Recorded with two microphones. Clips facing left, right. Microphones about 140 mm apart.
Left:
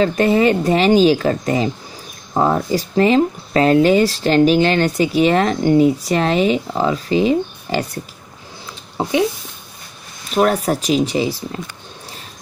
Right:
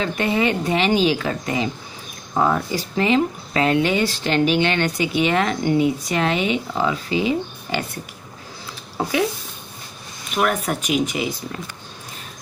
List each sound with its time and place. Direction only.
0.0 s speech: 40° left (ahead or behind)
9.0 s speech: 20° left (ahead or behind)
10.3 s speech: 30° left (ahead or behind)